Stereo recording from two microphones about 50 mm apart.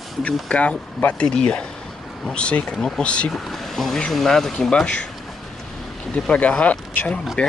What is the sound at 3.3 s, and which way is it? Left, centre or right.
Speech, centre.